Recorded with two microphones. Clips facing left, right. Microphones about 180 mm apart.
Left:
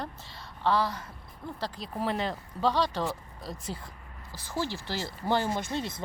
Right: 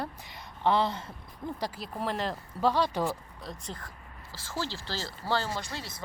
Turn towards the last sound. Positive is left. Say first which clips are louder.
# left 6 dB
turn(degrees=20)  # may be behind; listen again after turning